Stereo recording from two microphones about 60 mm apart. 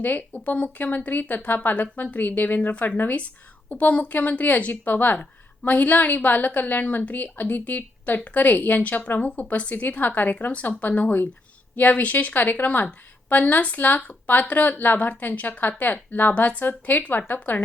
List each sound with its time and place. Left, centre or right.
0.0 s a woman's voice: left